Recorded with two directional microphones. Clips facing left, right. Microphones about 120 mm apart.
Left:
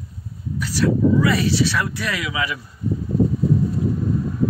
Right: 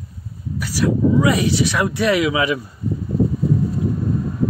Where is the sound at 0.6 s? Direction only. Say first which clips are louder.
Even; 15° right (ahead or behind).